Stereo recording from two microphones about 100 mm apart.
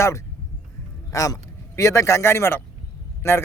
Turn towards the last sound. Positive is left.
turn(degrees=25)  # may be behind; listen again after turning